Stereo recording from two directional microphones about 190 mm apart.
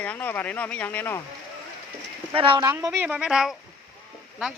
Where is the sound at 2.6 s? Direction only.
15° right (ahead or behind).